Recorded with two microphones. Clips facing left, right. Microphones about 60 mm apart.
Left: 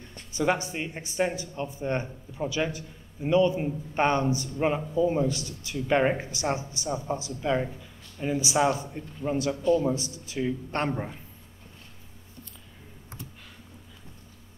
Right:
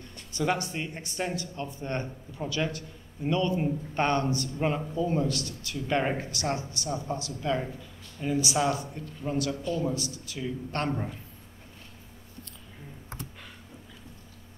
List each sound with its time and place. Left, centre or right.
0.1 s a man's voice: centre